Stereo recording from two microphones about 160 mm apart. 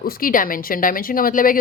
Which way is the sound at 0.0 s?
65° left (ahead or behind).